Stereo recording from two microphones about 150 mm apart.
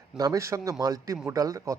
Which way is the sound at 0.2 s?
20° right (ahead or behind).